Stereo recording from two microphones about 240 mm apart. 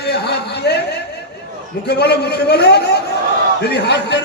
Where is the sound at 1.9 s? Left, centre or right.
Left.